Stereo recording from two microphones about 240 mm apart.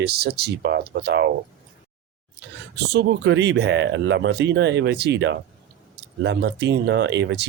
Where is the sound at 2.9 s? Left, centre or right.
Right.